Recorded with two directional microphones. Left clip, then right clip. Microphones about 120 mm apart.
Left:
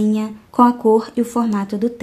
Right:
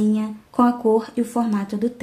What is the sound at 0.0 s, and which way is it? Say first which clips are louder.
A woman's voice: left 2 dB; 40° left (ahead or behind).